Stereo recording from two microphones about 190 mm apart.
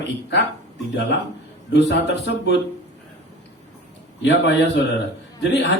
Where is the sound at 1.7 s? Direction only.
65° left (ahead or behind).